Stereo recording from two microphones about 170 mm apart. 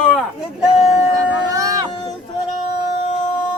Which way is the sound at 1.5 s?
20° right (ahead or behind).